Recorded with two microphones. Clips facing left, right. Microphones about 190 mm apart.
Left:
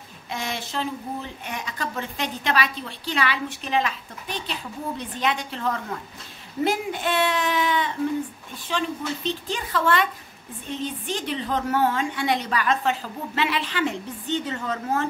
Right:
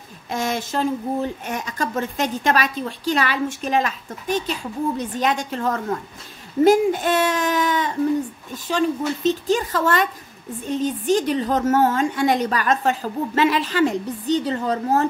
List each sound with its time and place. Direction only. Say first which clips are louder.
0.3 s a woman's voice: right 6 dB; 45° right (ahead or behind)